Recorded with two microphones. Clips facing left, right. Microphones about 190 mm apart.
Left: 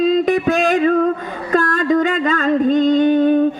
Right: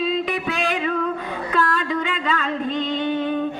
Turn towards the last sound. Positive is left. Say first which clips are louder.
# left 10 dB
turn(degrees=45)  # may be behind; listen again after turning